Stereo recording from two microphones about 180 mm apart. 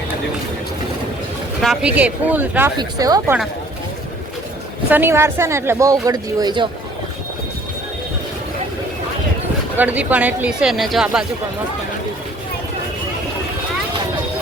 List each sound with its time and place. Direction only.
1.6 s speech: 5° right (ahead or behind); by 3.3 s 20° right (ahead or behind)
4.9 s speech: 10° right (ahead or behind)
9.7 s speech: 10° right (ahead or behind)